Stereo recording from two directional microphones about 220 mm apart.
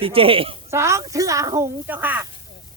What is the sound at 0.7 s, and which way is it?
Speech, 15° right (ahead or behind).